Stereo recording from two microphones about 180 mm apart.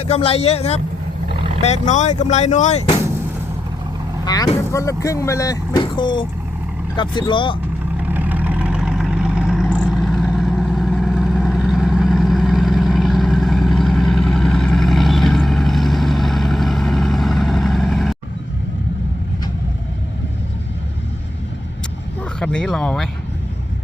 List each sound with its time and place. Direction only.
0.0 s a man's voice: 35° left (ahead or behind)
1.3 s vehicle: 30° right (ahead or behind)
1.6 s a man's voice: 40° left (ahead or behind)
4.3 s speech: 20° left (ahead or behind)
7.9 s vehicle: 10° right (ahead or behind)
22.4 s speech: 5° left (ahead or behind)